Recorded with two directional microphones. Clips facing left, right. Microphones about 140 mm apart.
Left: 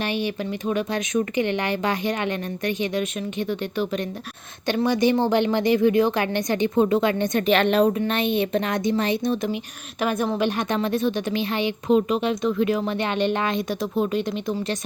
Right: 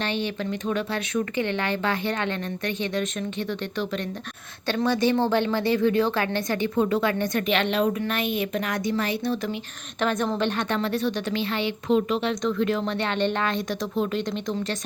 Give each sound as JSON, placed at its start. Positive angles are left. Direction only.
{"t": 0.0, "sound": "a woman's voice", "side_deg": 10}
{"t": 7.4, "sound": "a woman's voice", "side_deg": 45}
{"t": 7.9, "sound": "a woman's voice", "side_deg": 25}